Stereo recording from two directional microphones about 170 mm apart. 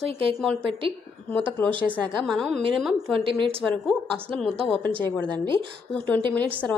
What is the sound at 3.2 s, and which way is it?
Speech, 30° right (ahead or behind).